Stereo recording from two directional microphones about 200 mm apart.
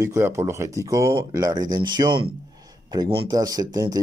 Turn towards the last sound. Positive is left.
turn(degrees=-20)  # may be behind; listen again after turning